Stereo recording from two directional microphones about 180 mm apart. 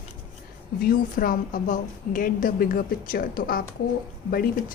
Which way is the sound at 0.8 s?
50° left (ahead or behind).